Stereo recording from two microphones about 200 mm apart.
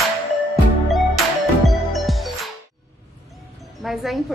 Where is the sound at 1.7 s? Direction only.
Centre (ahead or behind).